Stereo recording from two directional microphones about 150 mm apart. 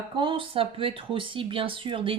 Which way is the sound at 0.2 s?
35° right (ahead or behind).